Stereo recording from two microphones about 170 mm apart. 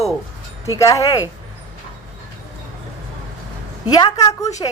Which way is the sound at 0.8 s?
20° left (ahead or behind).